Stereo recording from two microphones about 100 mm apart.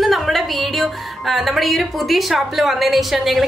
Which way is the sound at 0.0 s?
Centre (ahead or behind).